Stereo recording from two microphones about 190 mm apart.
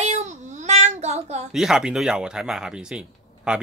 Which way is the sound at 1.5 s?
Centre (ahead or behind).